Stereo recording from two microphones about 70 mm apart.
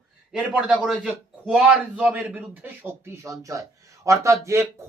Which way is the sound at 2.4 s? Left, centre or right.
Right.